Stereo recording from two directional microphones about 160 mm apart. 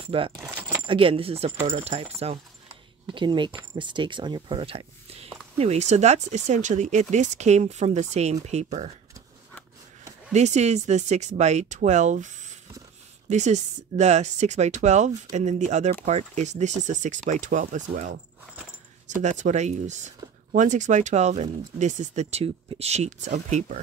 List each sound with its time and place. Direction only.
0.0 s speech: 35° right (ahead or behind)
0.4 s a sound: 10° right (ahead or behind)
0.8 s speech: 35° right (ahead or behind)
3.1 s speech: 30° right (ahead or behind)
10.3 s speech: 45° right (ahead or behind)